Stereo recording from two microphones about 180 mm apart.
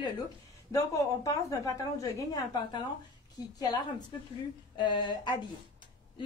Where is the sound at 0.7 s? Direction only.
20° left (ahead or behind).